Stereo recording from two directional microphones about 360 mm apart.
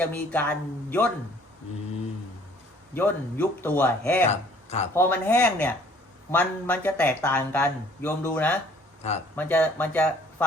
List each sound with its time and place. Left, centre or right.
0.0 s speech: centre
2.9 s speech: centre
4.3 s speech: centre
4.9 s speech: centre